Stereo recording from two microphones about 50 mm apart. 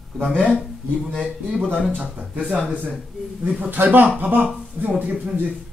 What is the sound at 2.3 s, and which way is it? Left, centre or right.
Speech, right.